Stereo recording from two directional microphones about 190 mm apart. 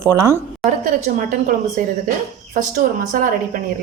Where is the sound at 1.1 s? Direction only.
45° right (ahead or behind).